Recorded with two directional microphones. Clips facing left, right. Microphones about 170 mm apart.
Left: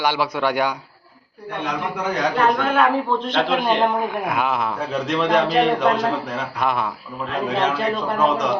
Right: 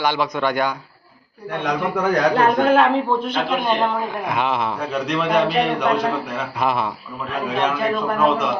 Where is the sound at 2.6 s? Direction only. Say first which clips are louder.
Right 3 dB; 35° right (ahead or behind).